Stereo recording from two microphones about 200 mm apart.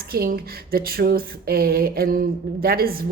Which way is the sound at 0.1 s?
50° right (ahead or behind).